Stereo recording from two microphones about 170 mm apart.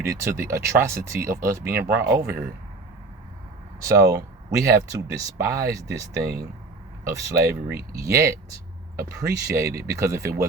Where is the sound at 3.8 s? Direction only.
15° right (ahead or behind).